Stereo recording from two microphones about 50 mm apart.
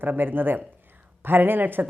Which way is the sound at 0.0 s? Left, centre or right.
Right.